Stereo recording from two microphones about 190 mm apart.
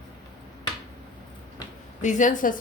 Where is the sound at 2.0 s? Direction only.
40° left (ahead or behind).